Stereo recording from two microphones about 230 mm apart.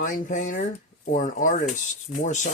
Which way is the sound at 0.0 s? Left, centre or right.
Left.